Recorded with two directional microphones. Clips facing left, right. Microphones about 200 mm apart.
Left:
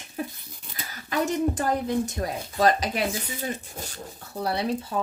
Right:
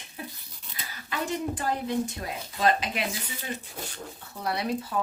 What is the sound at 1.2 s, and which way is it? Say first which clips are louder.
A woman's voice: left 5 dB; 45° left (ahead or behind).